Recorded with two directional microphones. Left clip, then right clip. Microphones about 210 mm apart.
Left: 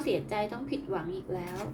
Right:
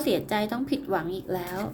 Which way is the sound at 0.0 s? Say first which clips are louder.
Right 4 dB; 50° right (ahead or behind).